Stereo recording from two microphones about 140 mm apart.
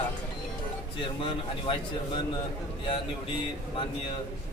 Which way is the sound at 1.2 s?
40° left (ahead or behind).